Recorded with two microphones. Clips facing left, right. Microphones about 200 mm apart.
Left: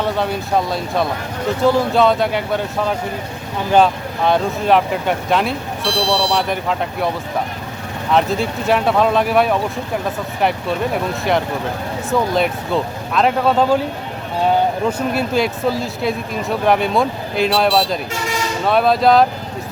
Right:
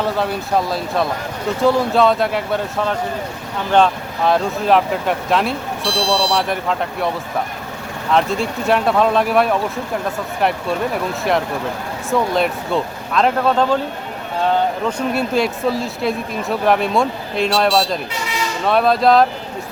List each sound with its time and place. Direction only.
0.0 s speech: centre (ahead or behind)
5.8 s speech: 60° left (ahead or behind)
6.3 s speech: centre (ahead or behind)
8.1 s speech: centre (ahead or behind)
14.8 s speech: 5° left (ahead or behind)